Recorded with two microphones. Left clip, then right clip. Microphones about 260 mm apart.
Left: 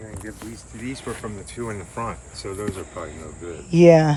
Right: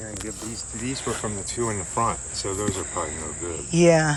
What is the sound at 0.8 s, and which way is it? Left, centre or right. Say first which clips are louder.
Speech: right 2 dB; centre.